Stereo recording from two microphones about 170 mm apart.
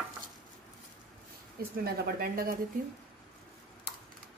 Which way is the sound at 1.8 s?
60° right (ahead or behind).